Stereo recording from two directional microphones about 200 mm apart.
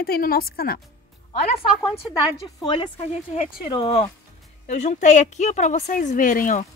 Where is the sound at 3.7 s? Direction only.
25° left (ahead or behind).